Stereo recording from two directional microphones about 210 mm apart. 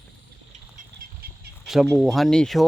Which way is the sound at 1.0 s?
45° right (ahead or behind).